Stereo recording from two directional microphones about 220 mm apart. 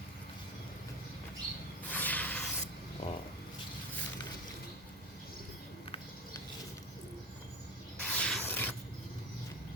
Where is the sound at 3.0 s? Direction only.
25° left (ahead or behind).